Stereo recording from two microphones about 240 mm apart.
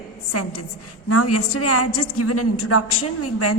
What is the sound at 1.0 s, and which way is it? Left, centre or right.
A woman's voice, left.